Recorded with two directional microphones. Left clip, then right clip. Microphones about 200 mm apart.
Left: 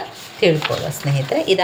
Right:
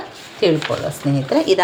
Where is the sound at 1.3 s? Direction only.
15° right (ahead or behind).